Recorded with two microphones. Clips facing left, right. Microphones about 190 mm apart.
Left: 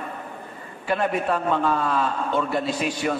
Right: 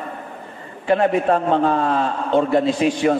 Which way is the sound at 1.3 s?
30° right (ahead or behind).